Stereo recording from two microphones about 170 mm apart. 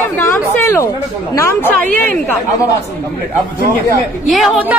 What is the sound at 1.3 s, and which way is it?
Speech, 15° left (ahead or behind).